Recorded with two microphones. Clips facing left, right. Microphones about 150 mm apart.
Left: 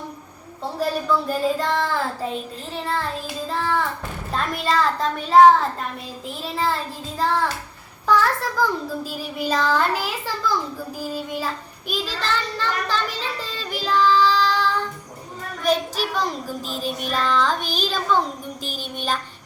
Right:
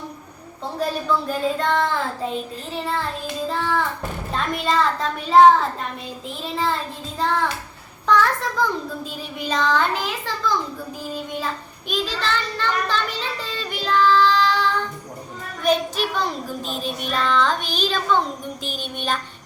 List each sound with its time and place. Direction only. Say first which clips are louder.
0.6 s speech: left 1 dB; centre (ahead or behind)
13.6 s child singing: right 1 dB; centre (ahead or behind)
16.8 s speech: left 1 dB; centre (ahead or behind)
17.6 s child singing: even; 40° left (ahead or behind)
17.8 s speech: right 1 dB; 5° left (ahead or behind)
18.6 s child singing: right 1 dB; 40° left (ahead or behind)